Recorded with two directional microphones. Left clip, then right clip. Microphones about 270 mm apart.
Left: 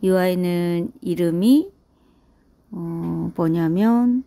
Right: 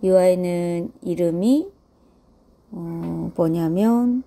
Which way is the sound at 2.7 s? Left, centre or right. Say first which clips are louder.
Left 2 dB; left.